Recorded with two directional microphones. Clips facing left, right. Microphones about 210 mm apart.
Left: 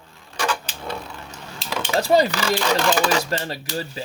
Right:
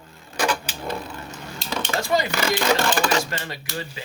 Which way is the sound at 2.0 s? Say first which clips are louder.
Left 7 dB; 35° left (ahead or behind).